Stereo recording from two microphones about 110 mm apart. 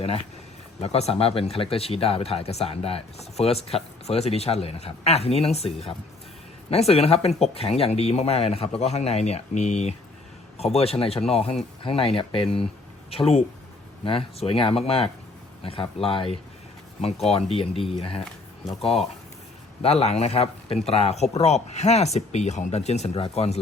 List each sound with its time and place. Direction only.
0.8 s speech: 70° left (ahead or behind); by 9.9 s 90° left
10.6 s speech: 70° left (ahead or behind)
19.8 s speech: 70° left (ahead or behind)